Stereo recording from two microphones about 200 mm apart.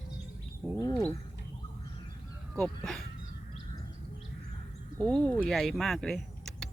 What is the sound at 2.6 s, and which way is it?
Speech, centre (ahead or behind).